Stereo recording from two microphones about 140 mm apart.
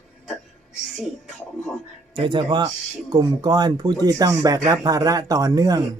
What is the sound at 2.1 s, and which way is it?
Speech, 35° right (ahead or behind).